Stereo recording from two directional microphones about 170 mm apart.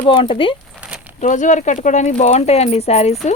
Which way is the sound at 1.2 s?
45° left (ahead or behind).